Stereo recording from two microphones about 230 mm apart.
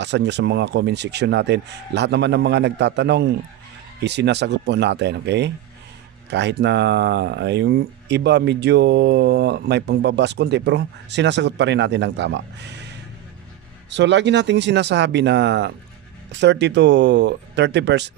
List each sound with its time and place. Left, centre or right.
0.0 s speech: right